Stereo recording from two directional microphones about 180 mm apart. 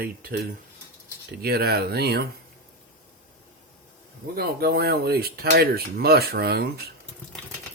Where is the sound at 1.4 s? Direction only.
60° right (ahead or behind).